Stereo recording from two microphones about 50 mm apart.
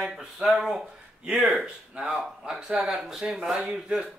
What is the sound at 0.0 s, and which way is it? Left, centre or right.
Speech, centre.